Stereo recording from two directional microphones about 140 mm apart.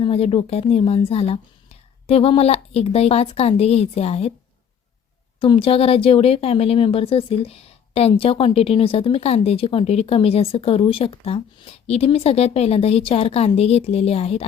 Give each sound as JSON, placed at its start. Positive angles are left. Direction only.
{"t": 0.0, "sound": "a woman's voice", "side_deg": 40}
{"t": 5.4, "sound": "a woman's voice", "side_deg": 40}